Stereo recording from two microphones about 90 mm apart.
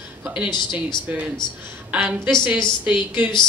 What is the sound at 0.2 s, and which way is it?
A woman's voice, 15° right (ahead or behind).